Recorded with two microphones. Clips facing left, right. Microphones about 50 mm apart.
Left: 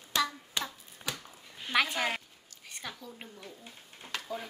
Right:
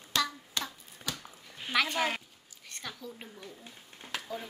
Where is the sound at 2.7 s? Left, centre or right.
Centre.